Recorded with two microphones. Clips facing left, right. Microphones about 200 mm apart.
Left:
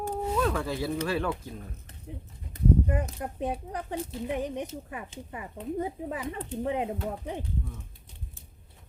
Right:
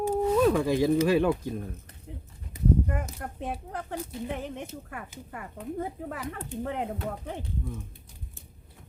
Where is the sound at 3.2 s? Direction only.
15° left (ahead or behind).